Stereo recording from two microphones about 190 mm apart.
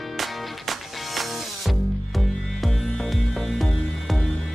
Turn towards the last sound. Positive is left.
turn(degrees=0)  # may be behind; listen again after turning